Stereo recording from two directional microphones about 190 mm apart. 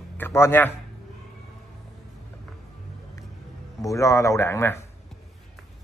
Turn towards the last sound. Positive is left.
turn(degrees=10)  # may be behind; listen again after turning